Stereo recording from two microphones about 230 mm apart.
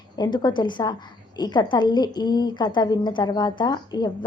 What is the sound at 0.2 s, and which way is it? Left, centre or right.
A woman's voice, centre.